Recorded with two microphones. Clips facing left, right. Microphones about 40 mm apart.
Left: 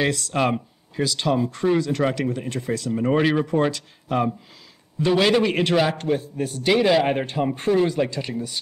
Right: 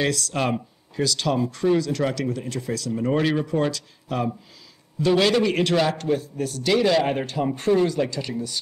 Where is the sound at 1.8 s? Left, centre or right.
Left.